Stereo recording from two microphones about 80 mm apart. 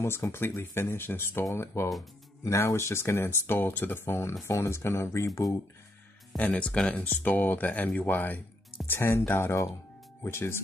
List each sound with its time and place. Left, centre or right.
0.0 s speech: left
6.3 s speech: centre; by 10.6 s left